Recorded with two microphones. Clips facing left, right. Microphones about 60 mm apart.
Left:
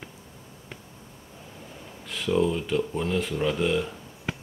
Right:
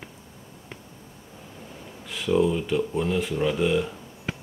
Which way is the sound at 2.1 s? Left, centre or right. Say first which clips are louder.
Right 2 dB; centre.